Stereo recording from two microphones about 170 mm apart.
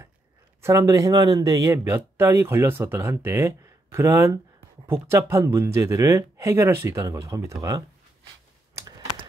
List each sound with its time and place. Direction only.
0.6 s speech: 20° right (ahead or behind)